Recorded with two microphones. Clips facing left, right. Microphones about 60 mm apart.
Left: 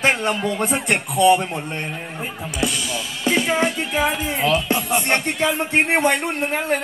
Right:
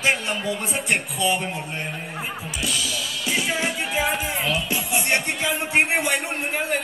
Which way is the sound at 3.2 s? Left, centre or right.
Left.